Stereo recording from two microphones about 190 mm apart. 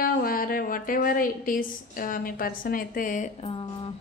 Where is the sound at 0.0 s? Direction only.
50° left (ahead or behind); by 3.9 s 30° left (ahead or behind).